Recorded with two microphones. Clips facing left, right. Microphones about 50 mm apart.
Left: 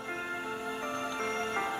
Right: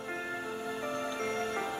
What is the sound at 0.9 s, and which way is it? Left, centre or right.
Music, left.